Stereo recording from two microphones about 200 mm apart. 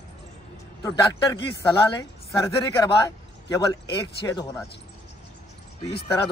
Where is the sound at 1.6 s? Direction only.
15° left (ahead or behind).